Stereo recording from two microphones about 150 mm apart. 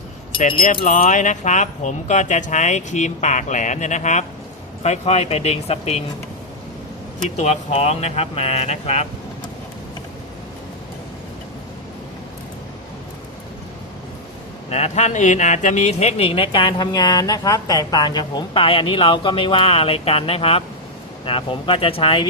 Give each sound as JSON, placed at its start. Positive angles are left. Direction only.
{"t": 0.6, "sound": "speech", "side_deg": 65}
{"t": 7.3, "sound": "speech", "side_deg": 50}
{"t": 14.7, "sound": "speech", "side_deg": 45}